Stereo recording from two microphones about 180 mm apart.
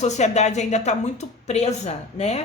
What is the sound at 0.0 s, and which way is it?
A woman's voice, 40° left (ahead or behind).